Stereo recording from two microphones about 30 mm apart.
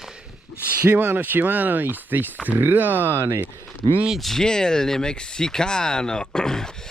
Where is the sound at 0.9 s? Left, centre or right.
Right.